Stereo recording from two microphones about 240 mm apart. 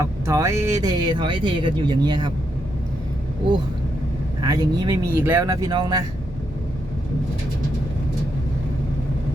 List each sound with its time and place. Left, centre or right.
0.0 s speech: centre
4.4 s speech: centre